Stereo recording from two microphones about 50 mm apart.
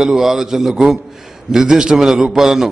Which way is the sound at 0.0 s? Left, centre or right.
Centre.